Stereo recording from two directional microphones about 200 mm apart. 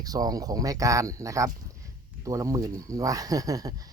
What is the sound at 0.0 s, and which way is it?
Speech, 20° right (ahead or behind).